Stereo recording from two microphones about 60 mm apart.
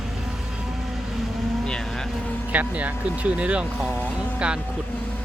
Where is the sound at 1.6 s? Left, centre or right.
Centre.